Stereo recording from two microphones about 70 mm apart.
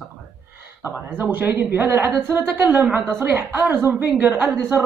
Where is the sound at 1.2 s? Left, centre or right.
Right.